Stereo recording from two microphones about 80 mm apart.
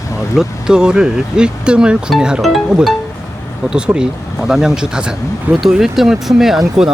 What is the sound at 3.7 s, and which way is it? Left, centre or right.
Speech, centre.